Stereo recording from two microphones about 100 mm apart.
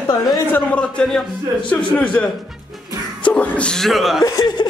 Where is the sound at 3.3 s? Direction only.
10° left (ahead or behind).